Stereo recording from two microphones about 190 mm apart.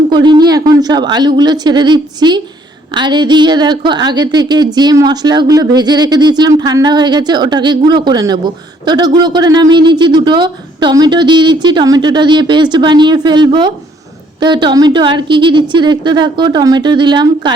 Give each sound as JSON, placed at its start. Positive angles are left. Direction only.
{"t": 0.1, "sound": "a woman's voice", "side_deg": -20}